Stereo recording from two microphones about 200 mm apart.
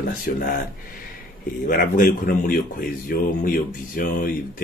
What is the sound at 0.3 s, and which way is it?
Speech, 45° left (ahead or behind).